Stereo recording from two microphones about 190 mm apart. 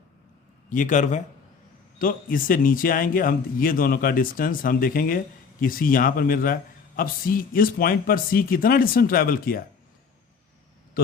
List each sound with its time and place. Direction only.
0.7 s a man's voice: 40° left (ahead or behind)